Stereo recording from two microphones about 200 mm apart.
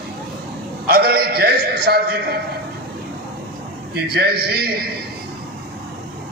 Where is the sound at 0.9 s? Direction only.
50° right (ahead or behind).